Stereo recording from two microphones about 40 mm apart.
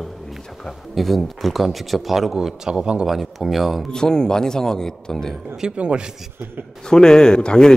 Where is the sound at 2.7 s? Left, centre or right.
Right.